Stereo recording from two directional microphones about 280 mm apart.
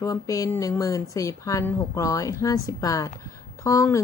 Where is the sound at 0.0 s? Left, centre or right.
Centre.